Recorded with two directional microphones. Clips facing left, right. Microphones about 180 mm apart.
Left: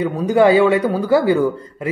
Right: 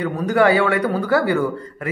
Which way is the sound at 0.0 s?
15° left (ahead or behind).